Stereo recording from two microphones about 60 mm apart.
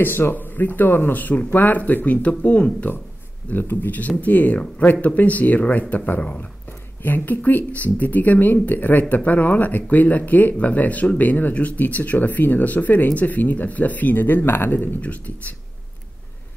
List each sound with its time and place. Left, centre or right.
0.0 s speech: left
3.4 s speech: left